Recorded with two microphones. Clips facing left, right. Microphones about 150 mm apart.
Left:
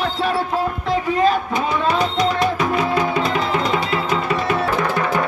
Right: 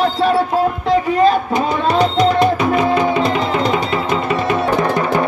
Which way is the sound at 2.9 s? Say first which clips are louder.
Right 4 dB; 25° right (ahead or behind).